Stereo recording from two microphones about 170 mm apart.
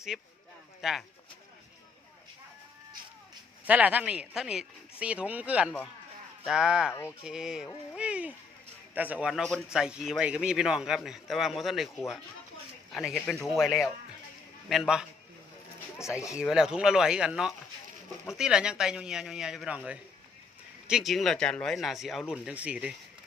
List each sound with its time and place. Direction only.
0.1 s speech: centre (ahead or behind)
3.7 s speech: 10° right (ahead or behind)
16.0 s speech: 15° left (ahead or behind)
16.4 s speech: 5° right (ahead or behind)